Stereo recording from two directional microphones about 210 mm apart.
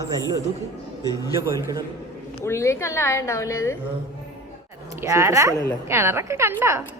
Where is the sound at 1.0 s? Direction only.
15° left (ahead or behind).